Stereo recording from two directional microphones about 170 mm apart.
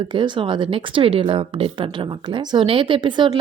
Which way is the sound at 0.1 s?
30° right (ahead or behind).